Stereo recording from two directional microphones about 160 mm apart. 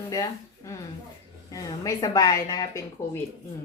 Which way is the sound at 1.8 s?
20° left (ahead or behind).